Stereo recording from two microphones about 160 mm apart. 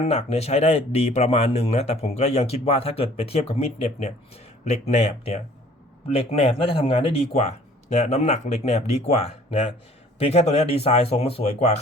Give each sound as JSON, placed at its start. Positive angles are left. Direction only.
{"t": 0.0, "sound": "a man's voice", "side_deg": 40}